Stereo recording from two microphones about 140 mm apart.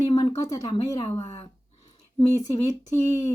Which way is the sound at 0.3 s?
25° left (ahead or behind).